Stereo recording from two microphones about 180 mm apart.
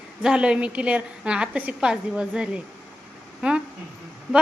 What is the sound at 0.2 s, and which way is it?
A woman's voice, 5° right (ahead or behind).